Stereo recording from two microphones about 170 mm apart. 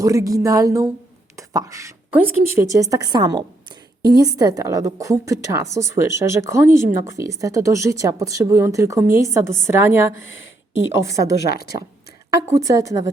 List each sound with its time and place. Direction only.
0.0 s a woman's voice: 20° right (ahead or behind)
10.2 s speech: 90° left
10.9 s a woman's voice: 20° right (ahead or behind)
11.4 s a woman's voice: 65° left (ahead or behind)
12.3 s a woman's voice: 20° right (ahead or behind)